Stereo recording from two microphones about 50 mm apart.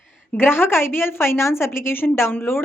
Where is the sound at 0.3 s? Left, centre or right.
Left.